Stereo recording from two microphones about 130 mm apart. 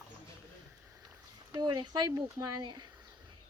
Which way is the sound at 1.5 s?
35° right (ahead or behind).